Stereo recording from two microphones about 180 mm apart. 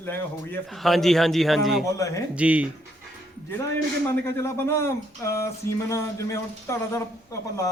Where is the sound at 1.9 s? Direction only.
20° left (ahead or behind).